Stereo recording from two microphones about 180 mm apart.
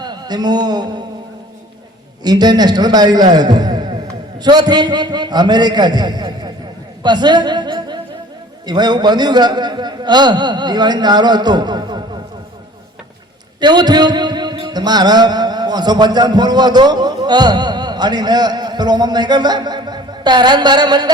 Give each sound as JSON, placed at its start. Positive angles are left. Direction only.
{"t": 0.0, "sound": "a man's voice", "side_deg": -25}
{"t": 2.2, "sound": "a man's voice", "side_deg": -20}
{"t": 13.6, "sound": "a man's voice", "side_deg": -25}